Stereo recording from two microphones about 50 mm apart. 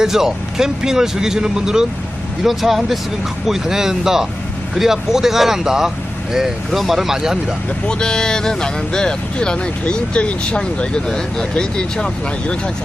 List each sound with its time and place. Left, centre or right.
0.0 s speech: centre
7.9 s speech: centre